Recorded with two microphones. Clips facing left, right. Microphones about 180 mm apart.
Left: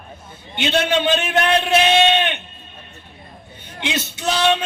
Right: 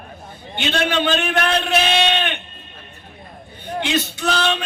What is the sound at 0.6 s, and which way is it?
A man's voice, 20° left (ahead or behind).